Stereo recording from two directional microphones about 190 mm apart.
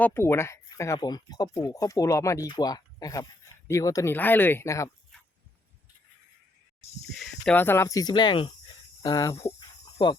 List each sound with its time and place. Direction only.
0.0 s speech: 10° left (ahead or behind)
5.1 s chop: centre (ahead or behind)
7.1 s speech: centre (ahead or behind); by 8.4 s 25° left (ahead or behind)
9.0 s cricket: 20° left (ahead or behind)